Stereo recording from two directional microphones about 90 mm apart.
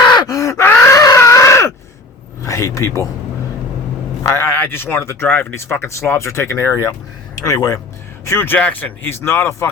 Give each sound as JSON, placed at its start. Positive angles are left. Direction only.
{"t": 0.1, "sound": "gasp", "side_deg": 45}
{"t": 0.6, "sound": "groan", "side_deg": 30}
{"t": 2.4, "sound": "speech", "side_deg": 35}
{"t": 4.2, "sound": "speech", "side_deg": 30}
{"t": 7.3, "sound": "speech", "side_deg": 40}
{"t": 8.2, "sound": "speech", "side_deg": 30}